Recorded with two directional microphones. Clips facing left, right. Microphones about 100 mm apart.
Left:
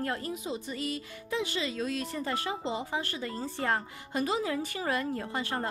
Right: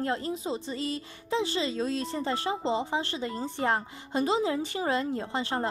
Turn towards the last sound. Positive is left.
turn(degrees=-25)  # may be behind; listen again after turning